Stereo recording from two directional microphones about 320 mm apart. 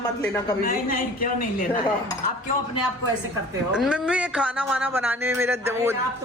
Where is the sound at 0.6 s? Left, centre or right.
Left.